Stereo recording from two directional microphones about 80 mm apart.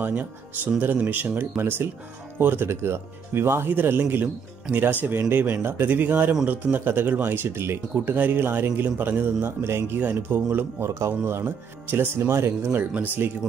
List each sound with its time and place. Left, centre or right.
0.0 s speech: centre